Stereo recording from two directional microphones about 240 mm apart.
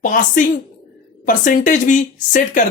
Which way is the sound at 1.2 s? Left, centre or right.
Left.